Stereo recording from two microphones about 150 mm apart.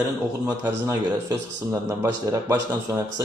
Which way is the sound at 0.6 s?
20° right (ahead or behind).